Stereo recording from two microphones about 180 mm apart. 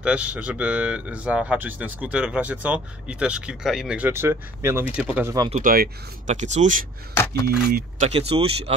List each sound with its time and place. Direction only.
0.0 s speech: 5° right (ahead or behind)
5.5 s speech: 50° right (ahead or behind)
8.0 s speech: 35° right (ahead or behind)